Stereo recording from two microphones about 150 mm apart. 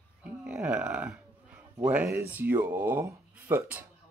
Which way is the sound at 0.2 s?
5° right (ahead or behind).